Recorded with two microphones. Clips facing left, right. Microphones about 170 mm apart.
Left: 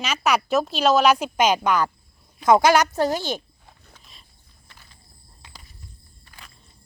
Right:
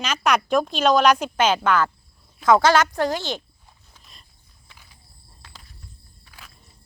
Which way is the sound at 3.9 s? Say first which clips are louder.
Left 1 dB; centre (ahead or behind).